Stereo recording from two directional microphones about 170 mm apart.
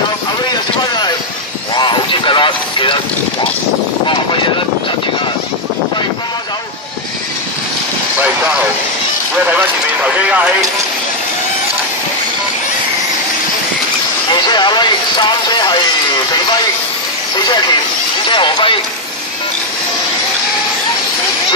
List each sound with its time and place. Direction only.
0.5 s vehicle: 25° left (ahead or behind)
1.8 s speech: 30° left (ahead or behind)
9.5 s speech: 10° right (ahead or behind)
14.5 s speech: 25° left (ahead or behind)
18.3 s speech: 30° left (ahead or behind)